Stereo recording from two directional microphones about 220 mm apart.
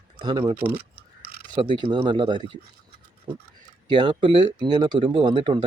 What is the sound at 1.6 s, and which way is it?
Speech, 20° right (ahead or behind).